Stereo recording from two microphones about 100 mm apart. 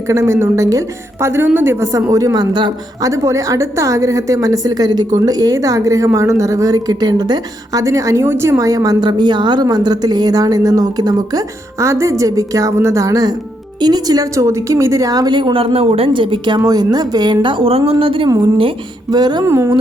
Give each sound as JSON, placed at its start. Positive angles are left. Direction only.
{"t": 0.1, "sound": "a woman's voice", "side_deg": -30}
{"t": 3.0, "sound": "a woman's voice", "side_deg": -30}
{"t": 15.4, "sound": "speech", "side_deg": -60}
{"t": 16.6, "sound": "a woman's voice", "side_deg": -40}
{"t": 19.1, "sound": "a woman's voice", "side_deg": -45}
{"t": 19.5, "sound": "speech", "side_deg": -30}